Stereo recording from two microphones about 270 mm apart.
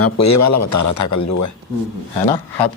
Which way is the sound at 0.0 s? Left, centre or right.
Left.